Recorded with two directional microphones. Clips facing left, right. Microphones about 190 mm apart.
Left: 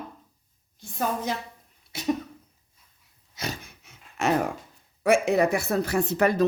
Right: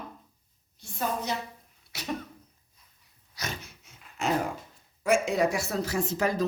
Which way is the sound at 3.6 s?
70° left (ahead or behind).